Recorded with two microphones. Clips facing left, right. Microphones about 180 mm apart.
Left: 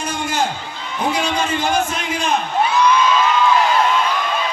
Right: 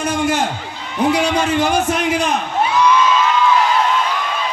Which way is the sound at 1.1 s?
70° right (ahead or behind).